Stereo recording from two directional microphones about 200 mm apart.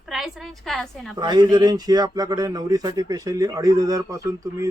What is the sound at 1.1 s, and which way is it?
Speech, 20° right (ahead or behind).